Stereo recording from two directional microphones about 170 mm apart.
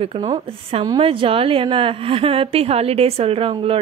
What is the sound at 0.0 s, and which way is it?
A woman's voice, 35° right (ahead or behind).